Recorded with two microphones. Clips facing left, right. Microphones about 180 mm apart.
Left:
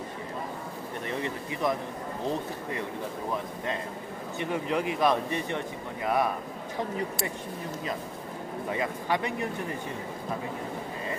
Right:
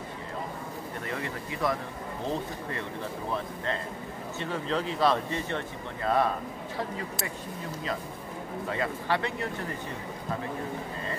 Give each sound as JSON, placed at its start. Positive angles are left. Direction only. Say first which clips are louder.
{"t": 1.0, "sound": "speech", "louder": "left 3 dB", "side_deg": 20}
{"t": 4.4, "sound": "speech", "louder": "left 2 dB", "side_deg": 15}
{"t": 8.6, "sound": "speech", "louder": "even", "side_deg": 15}